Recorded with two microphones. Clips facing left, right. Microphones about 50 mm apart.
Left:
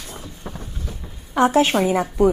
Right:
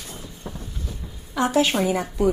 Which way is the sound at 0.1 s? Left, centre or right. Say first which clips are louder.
Left 2 dB; left.